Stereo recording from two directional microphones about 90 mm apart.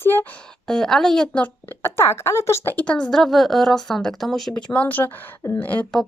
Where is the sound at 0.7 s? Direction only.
5° left (ahead or behind).